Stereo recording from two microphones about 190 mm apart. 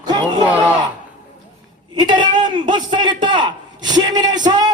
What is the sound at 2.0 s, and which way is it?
A man's voice, 25° right (ahead or behind).